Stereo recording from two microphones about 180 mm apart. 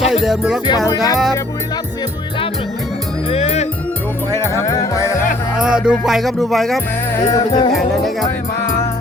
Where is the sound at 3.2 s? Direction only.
35° left (ahead or behind).